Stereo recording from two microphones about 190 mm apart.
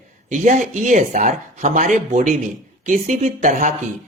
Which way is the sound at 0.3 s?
40° right (ahead or behind).